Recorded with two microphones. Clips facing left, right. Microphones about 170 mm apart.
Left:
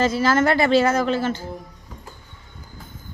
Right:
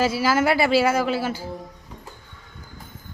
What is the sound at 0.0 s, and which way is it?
Speech, 10° right (ahead or behind).